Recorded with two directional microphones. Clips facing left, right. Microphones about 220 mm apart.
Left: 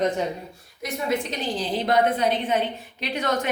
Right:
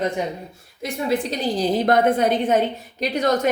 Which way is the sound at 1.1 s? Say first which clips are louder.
Right 5 dB; 35° right (ahead or behind).